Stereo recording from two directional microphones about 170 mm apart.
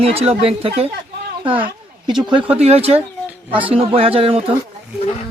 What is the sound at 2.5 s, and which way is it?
Speech, 35° right (ahead or behind).